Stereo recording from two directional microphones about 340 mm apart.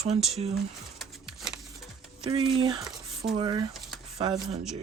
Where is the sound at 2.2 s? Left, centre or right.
Centre.